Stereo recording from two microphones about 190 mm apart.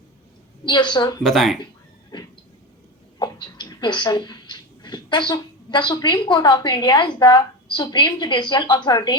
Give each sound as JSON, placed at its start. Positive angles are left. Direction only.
{"t": 0.6, "sound": "a woman's voice", "side_deg": 25}
{"t": 1.2, "sound": "speech", "side_deg": 0}
{"t": 2.1, "sound": "a sound", "side_deg": 20}
{"t": 3.2, "sound": "speech", "side_deg": 25}